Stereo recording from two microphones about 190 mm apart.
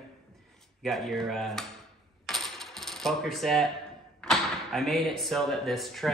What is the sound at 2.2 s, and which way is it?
Coin, centre (ahead or behind).